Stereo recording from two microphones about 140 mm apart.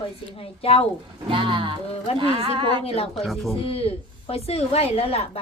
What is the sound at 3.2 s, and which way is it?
Speech, centre (ahead or behind).